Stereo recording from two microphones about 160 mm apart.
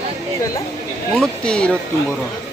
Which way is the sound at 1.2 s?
5° left (ahead or behind).